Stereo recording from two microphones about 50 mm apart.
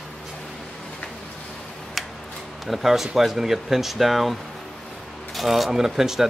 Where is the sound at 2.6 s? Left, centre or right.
Centre.